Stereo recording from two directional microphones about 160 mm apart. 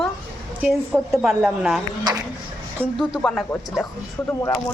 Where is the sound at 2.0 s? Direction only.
25° right (ahead or behind).